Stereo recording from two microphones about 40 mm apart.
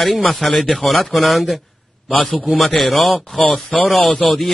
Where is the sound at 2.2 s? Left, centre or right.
Left.